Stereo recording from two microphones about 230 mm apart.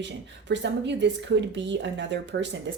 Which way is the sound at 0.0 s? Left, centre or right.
Right.